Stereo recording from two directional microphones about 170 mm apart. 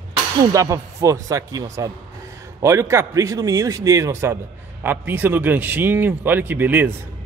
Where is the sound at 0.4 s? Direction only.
20° right (ahead or behind).